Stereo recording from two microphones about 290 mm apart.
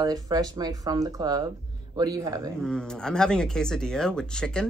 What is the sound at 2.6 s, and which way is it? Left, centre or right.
Speech, centre.